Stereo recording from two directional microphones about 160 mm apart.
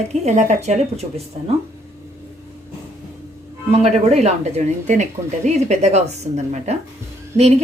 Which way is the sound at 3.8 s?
45° right (ahead or behind).